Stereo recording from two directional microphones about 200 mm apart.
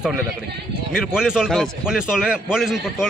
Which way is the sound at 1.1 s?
5° right (ahead or behind).